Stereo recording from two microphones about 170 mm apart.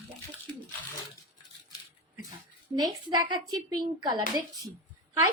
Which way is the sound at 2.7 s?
25° right (ahead or behind).